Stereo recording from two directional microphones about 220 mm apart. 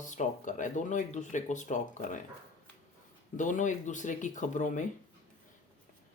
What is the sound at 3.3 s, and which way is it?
Speech, 35° left (ahead or behind).